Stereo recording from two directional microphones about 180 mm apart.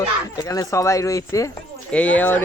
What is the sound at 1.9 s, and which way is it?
Speech, 10° left (ahead or behind).